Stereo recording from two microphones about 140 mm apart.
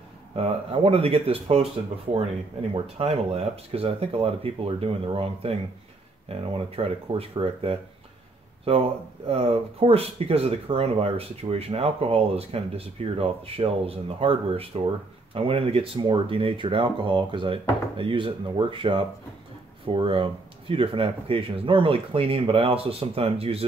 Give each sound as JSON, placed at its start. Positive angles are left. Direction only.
{"t": 0.4, "sound": "speech", "side_deg": -45}
{"t": 2.7, "sound": "speech", "side_deg": -45}
{"t": 9.3, "sound": "speech", "side_deg": -45}